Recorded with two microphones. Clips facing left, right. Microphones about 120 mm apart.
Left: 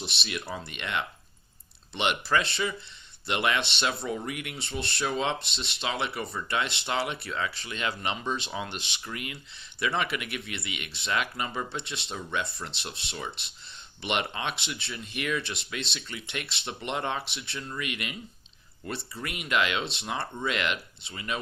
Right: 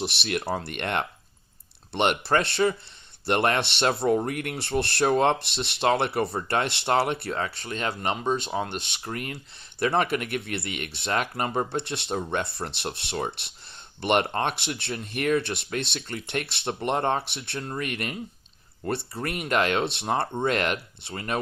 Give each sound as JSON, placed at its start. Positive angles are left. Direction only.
{"t": 0.0, "sound": "speech", "side_deg": -60}
{"t": 4.5, "sound": "speech", "side_deg": -65}
{"t": 17.3, "sound": "speech", "side_deg": -60}
{"t": 17.7, "sound": "speech", "side_deg": -45}
{"t": 19.8, "sound": "speech", "side_deg": -65}
{"t": 20.5, "sound": "speech", "side_deg": -45}